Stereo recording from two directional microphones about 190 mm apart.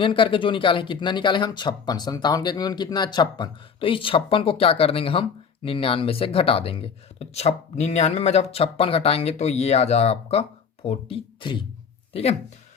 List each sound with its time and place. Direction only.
0.0 s speech: 25° left (ahead or behind)